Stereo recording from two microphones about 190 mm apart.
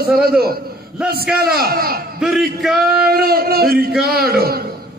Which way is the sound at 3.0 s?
55° right (ahead or behind).